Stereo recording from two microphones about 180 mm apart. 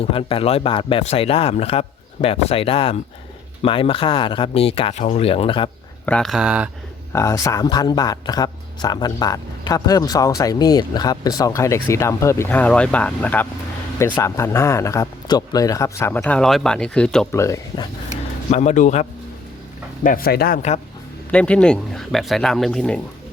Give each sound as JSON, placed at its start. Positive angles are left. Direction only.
{"t": 0.0, "sound": "speech", "side_deg": 30}
{"t": 6.1, "sound": "speech", "side_deg": 5}
{"t": 7.1, "sound": "speech", "side_deg": 15}
{"t": 17.3, "sound": "speech", "side_deg": 15}
{"t": 18.5, "sound": "speech", "side_deg": 40}
{"t": 20.1, "sound": "speech", "side_deg": 55}
{"t": 21.3, "sound": "speech", "side_deg": 5}